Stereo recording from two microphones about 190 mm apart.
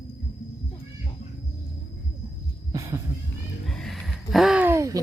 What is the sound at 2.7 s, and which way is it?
Heart sounds, 15° right (ahead or behind).